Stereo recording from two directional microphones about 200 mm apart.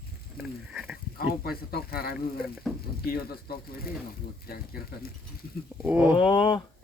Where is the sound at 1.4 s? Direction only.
50° left (ahead or behind).